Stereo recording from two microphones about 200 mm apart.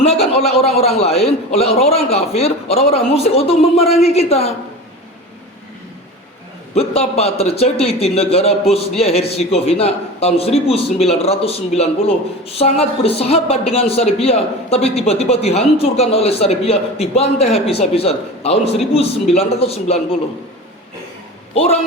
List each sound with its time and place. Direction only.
0.0 s a man's voice: 30° left (ahead or behind)
6.7 s a man's voice: 30° left (ahead or behind)
21.5 s a man's voice: 30° left (ahead or behind)